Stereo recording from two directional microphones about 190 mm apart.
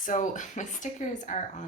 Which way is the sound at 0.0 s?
45° left (ahead or behind).